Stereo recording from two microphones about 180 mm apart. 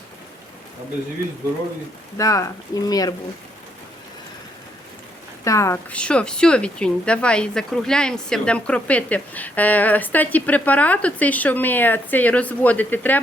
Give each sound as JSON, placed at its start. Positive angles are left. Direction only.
{"t": 2.1, "sound": "speech", "side_deg": 20}
{"t": 5.5, "sound": "speech", "side_deg": 15}